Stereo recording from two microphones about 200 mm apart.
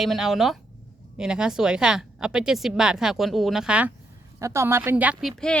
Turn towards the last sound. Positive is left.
turn(degrees=0)  # may be behind; listen again after turning